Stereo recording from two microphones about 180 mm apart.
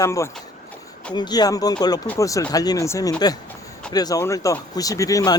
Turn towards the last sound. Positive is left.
turn(degrees=20)  # may be behind; listen again after turning